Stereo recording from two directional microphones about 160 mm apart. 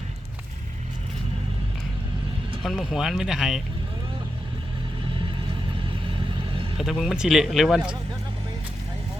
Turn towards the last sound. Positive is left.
turn(degrees=-5)  # may be behind; listen again after turning